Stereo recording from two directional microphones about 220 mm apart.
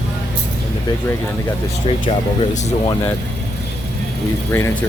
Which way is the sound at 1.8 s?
25° left (ahead or behind).